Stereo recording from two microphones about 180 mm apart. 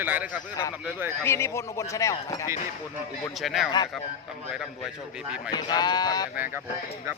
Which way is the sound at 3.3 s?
Centre (ahead or behind).